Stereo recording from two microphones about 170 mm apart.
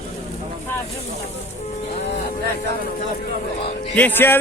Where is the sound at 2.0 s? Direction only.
40° left (ahead or behind).